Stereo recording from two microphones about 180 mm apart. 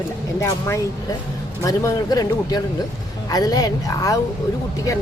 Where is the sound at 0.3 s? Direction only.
20° left (ahead or behind).